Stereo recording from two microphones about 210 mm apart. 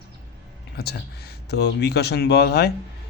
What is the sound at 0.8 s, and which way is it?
Speech, 50° left (ahead or behind).